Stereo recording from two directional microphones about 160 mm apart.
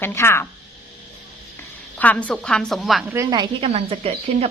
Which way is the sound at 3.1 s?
20° right (ahead or behind).